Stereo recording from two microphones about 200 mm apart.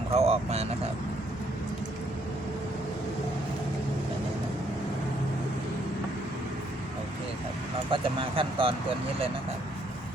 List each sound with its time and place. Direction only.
0.1 s speech: 30° right (ahead or behind)
7.9 s speech: 25° right (ahead or behind)